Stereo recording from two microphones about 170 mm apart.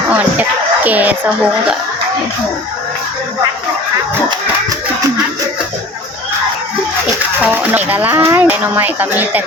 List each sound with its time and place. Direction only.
0.1 s music: 10° right (ahead or behind)
0.9 s speech: 10° right (ahead or behind)
7.4 s speech: 10° right (ahead or behind)